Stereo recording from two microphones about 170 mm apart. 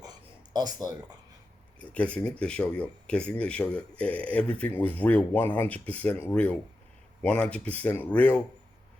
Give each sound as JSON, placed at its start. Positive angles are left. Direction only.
{"t": 0.5, "sound": "speech", "side_deg": -25}
{"t": 1.8, "sound": "speech", "side_deg": 10}